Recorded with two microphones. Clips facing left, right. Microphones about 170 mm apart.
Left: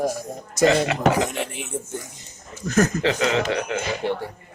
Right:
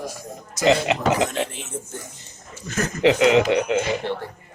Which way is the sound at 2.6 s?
40° left (ahead or behind).